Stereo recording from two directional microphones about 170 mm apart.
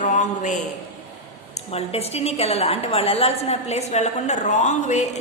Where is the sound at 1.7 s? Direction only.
35° left (ahead or behind).